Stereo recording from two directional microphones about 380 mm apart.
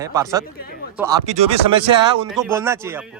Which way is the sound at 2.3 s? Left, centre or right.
Centre.